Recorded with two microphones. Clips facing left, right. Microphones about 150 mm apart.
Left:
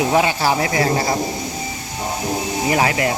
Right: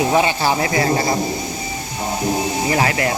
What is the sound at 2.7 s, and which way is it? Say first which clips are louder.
Speech: left 1 dB; 20° left (ahead or behind).